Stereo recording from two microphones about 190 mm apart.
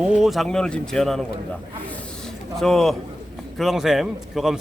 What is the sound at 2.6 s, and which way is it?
A man's voice, centre (ahead or behind).